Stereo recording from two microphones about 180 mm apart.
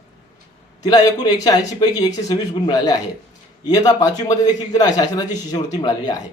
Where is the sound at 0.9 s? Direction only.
20° left (ahead or behind).